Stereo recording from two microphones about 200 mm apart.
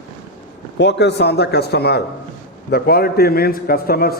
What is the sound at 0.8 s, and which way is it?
A man's voice, 60° left (ahead or behind).